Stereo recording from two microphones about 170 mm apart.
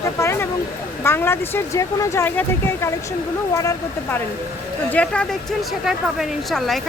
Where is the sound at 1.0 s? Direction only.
15° left (ahead or behind).